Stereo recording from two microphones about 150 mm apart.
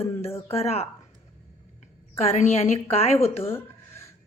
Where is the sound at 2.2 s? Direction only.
45° left (ahead or behind).